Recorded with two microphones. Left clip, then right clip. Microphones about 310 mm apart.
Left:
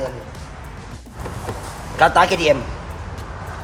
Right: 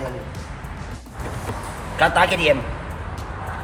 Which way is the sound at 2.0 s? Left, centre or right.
Left.